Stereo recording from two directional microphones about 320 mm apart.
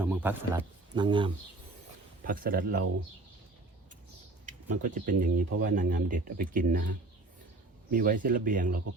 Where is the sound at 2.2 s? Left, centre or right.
Right.